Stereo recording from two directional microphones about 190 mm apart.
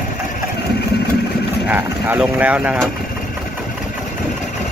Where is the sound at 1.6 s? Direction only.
10° right (ahead or behind).